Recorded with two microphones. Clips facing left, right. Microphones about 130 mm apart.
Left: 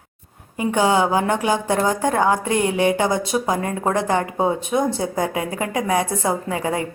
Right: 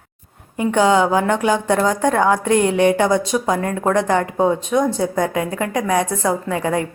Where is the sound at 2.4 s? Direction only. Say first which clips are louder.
Right 4 dB; 55° right (ahead or behind).